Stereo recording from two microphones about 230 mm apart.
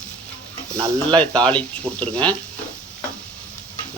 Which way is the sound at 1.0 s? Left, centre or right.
Centre.